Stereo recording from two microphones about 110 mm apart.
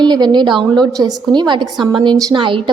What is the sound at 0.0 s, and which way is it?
A woman's voice, 40° right (ahead or behind).